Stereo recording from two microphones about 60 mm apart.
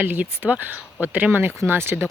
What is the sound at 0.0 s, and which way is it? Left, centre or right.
Speech, right.